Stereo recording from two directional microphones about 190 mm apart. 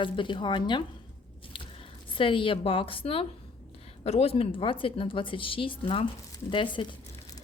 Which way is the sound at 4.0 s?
35° left (ahead or behind).